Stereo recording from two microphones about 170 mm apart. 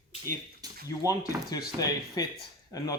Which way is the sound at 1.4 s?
20° left (ahead or behind).